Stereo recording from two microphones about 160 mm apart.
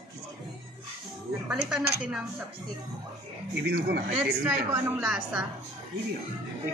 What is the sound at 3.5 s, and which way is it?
Speech, 90° right.